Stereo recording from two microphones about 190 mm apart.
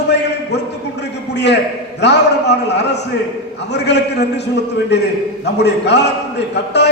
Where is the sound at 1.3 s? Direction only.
65° left (ahead or behind).